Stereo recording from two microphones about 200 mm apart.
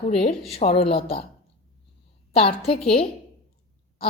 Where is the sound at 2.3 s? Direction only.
30° left (ahead or behind).